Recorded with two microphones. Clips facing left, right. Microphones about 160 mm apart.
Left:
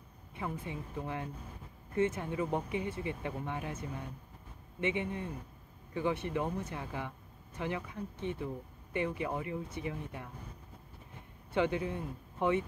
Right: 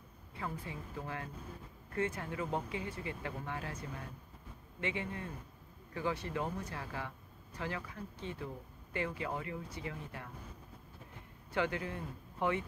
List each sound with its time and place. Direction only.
0.3 s speech: 20° left (ahead or behind)
11.5 s speech: 20° left (ahead or behind)